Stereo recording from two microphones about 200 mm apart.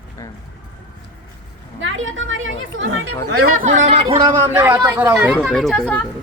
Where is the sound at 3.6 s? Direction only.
35° right (ahead or behind).